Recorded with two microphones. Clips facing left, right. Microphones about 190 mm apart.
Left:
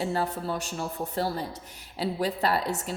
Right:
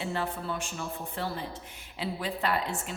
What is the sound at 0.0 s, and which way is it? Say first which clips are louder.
A woman's voice: left 4 dB; 40° left (ahead or behind).